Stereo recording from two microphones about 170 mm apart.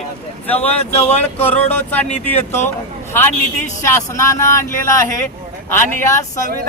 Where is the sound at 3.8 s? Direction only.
15° left (ahead or behind).